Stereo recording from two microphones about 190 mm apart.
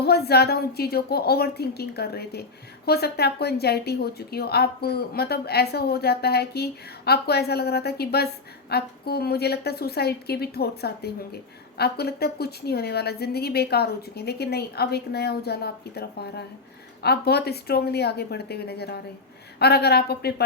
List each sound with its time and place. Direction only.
0.0 s a woman's voice: 55° left (ahead or behind)